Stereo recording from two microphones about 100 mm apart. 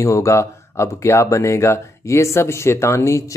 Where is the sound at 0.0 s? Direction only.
30° left (ahead or behind).